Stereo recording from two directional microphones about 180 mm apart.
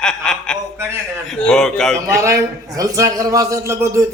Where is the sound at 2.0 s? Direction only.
15° right (ahead or behind).